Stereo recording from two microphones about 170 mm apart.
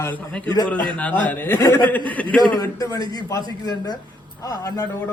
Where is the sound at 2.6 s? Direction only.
20° left (ahead or behind).